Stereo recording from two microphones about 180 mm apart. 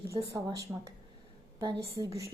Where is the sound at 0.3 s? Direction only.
20° right (ahead or behind).